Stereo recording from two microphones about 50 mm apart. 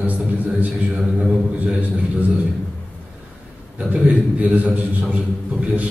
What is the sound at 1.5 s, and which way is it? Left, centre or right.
Speech, right.